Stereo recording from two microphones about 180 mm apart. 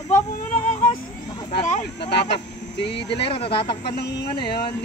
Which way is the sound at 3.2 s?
30° left (ahead or behind).